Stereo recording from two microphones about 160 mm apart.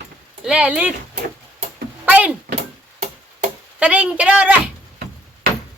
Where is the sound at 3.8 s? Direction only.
10° right (ahead or behind).